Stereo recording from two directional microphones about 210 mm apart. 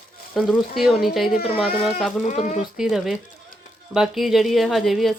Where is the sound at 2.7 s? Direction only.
Centre (ahead or behind).